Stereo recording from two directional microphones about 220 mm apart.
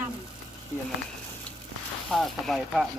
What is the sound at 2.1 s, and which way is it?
Speech, centre (ahead or behind).